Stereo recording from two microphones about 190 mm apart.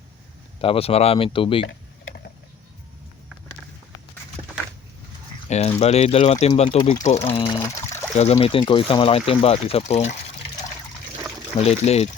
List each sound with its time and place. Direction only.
0.6 s speech: 30° left (ahead or behind)
1.6 s typing: 60° left (ahead or behind)
5.5 s speech: 35° left (ahead or behind)
8.1 s speech: 35° left (ahead or behind)
11.6 s speech: 35° left (ahead or behind)